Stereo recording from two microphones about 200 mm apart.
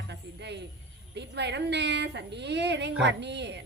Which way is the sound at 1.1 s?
60° right (ahead or behind).